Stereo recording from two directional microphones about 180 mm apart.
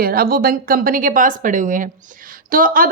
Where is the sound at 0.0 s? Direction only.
55° right (ahead or behind).